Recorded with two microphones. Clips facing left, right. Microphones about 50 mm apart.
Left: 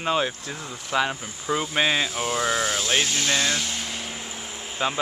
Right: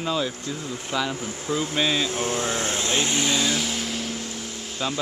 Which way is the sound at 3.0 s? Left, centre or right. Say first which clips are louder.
Right 1 dB; centre.